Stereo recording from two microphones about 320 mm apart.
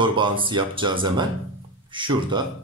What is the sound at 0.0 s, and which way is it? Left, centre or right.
Speech, centre.